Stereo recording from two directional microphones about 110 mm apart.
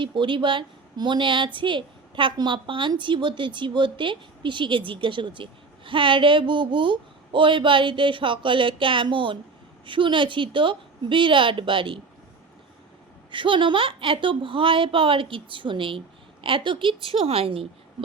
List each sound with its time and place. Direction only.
0.0 s a woman's voice: 45° right (ahead or behind)
13.3 s a woman's voice: 50° right (ahead or behind)